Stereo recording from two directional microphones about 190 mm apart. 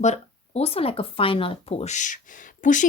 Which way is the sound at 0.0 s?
35° left (ahead or behind).